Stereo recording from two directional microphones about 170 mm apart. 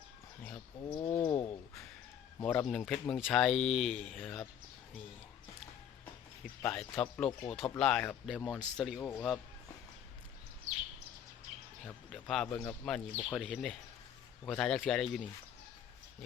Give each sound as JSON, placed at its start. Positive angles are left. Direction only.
{"t": 0.9, "sound": "a sound", "side_deg": 25}
{"t": 2.4, "sound": "speech", "side_deg": 5}
{"t": 6.6, "sound": "speech", "side_deg": 10}
{"t": 8.4, "sound": "speech", "side_deg": -5}
{"t": 9.0, "sound": "speech", "side_deg": 15}
{"t": 11.9, "sound": "speech", "side_deg": 0}
{"t": 12.5, "sound": "a sound", "side_deg": 20}
{"t": 12.8, "sound": "speech", "side_deg": 5}